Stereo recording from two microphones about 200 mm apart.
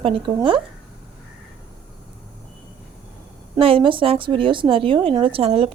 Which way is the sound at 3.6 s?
25° right (ahead or behind).